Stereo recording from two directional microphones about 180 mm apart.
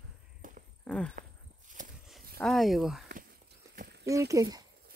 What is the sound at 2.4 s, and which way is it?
Speech, centre (ahead or behind).